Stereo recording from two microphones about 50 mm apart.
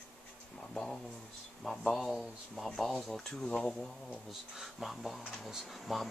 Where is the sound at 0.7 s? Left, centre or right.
Centre.